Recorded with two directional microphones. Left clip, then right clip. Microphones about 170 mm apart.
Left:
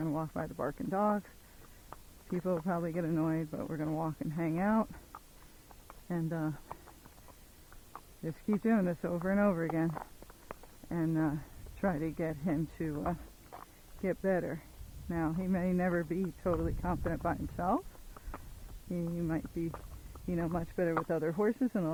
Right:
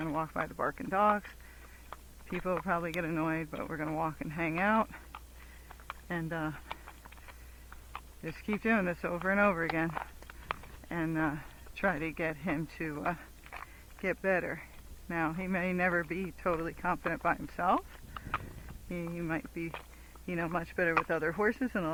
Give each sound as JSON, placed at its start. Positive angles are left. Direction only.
{"t": 0.0, "sound": "speech", "side_deg": -25}
{"t": 2.3, "sound": "speech", "side_deg": -20}
{"t": 6.1, "sound": "speech", "side_deg": -20}
{"t": 8.2, "sound": "speech", "side_deg": -15}
{"t": 13.5, "sound": "a sound", "side_deg": -10}
{"t": 14.0, "sound": "speech", "side_deg": -20}
{"t": 18.9, "sound": "speech", "side_deg": -20}